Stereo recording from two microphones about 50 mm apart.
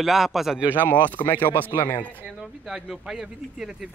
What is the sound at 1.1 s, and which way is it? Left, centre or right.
Speech, left.